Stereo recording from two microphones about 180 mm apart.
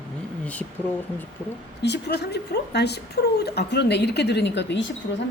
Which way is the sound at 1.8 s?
70° left (ahead or behind).